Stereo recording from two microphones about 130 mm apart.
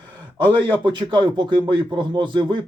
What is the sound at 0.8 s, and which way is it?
Speech, 35° right (ahead or behind).